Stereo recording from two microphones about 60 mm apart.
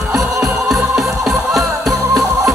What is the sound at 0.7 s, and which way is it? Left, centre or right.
Music, centre.